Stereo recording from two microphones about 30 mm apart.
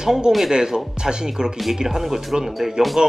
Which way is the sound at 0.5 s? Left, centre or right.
Right.